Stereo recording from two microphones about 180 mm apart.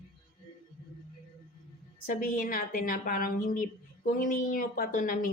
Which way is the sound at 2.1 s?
50° left (ahead or behind).